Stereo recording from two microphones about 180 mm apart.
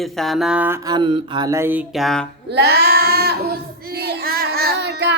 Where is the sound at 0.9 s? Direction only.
25° right (ahead or behind).